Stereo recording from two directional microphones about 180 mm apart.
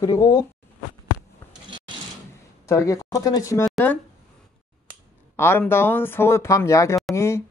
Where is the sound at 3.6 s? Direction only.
5° left (ahead or behind).